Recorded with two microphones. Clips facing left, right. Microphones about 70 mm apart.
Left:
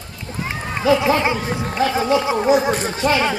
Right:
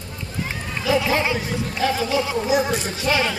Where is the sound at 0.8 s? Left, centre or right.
Left.